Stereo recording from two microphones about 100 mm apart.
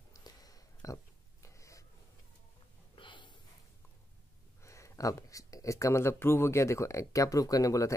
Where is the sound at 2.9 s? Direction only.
55° left (ahead or behind).